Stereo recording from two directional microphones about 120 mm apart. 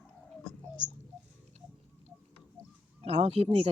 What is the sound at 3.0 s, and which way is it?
Speech, 55° right (ahead or behind).